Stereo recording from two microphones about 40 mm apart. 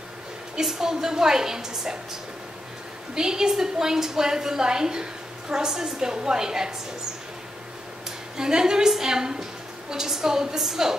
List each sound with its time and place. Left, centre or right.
0.6 s a woman's voice: centre
3.2 s a woman's voice: centre
8.4 s a woman's voice: centre